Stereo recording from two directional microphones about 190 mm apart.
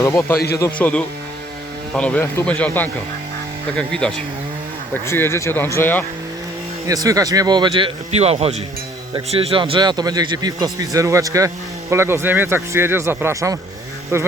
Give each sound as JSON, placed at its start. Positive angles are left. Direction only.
{"t": 0.0, "sound": "speech", "side_deg": 15}
{"t": 6.8, "sound": "speech", "side_deg": -20}